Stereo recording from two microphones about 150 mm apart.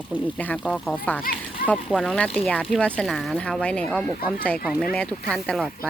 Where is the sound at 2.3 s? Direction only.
10° left (ahead or behind).